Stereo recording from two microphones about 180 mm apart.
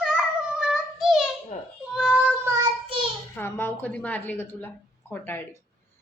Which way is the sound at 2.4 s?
20° right (ahead or behind).